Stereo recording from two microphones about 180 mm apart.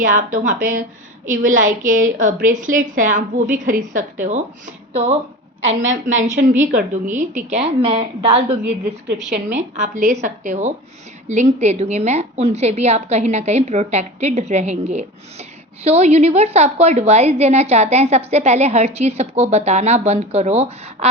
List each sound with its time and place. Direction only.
0.0 s a woman's voice: 45° right (ahead or behind)
6.1 s a woman's voice: 40° right (ahead or behind)
8.4 s a woman's voice: 10° right (ahead or behind)
9.1 s a woman's voice: 40° right (ahead or behind)